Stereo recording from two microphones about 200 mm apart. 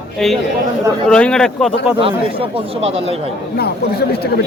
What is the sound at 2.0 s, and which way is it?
Speech, 25° right (ahead or behind).